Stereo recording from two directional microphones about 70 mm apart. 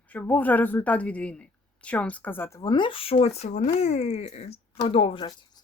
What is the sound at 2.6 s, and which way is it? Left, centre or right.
Speech, left.